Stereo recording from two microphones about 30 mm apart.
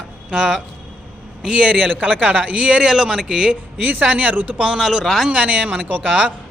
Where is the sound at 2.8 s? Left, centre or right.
Right.